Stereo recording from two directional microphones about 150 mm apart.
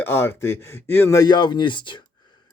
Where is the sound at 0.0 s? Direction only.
15° left (ahead or behind).